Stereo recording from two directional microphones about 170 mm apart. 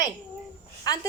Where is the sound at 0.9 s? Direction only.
25° left (ahead or behind).